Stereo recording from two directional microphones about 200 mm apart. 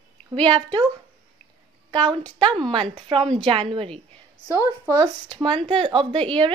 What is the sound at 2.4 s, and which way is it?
A woman's voice, 25° right (ahead or behind).